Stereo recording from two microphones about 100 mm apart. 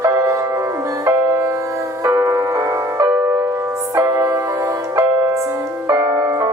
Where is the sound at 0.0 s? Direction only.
25° right (ahead or behind).